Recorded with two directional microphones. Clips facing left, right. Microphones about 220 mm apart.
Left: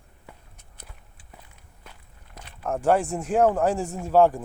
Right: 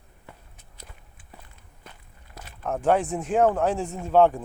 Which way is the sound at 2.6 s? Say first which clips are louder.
Left 1 dB; 10° left (ahead or behind).